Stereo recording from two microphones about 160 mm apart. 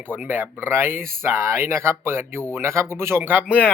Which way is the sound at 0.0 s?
15° right (ahead or behind).